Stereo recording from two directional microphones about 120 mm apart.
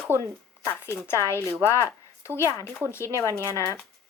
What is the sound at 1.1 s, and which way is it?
Speech, 20° left (ahead or behind).